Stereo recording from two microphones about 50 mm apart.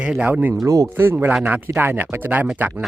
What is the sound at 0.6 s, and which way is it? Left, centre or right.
Speech, right.